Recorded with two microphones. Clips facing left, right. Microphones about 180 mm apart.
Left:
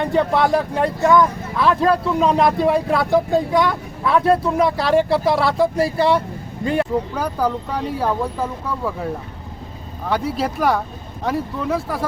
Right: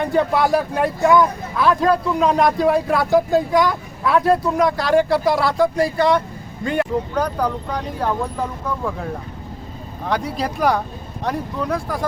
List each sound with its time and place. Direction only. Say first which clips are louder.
0.0 s speech: even; centre (ahead or behind)
5.7 s speech: even; 30° left (ahead or behind)
6.7 s speech: right 1 dB; 5° left (ahead or behind)
10.1 s speech: left 1 dB; centre (ahead or behind)